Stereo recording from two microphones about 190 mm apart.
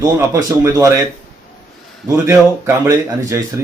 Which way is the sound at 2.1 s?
15° right (ahead or behind).